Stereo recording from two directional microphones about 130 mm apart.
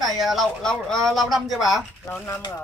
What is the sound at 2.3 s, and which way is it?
Speech, 30° left (ahead or behind).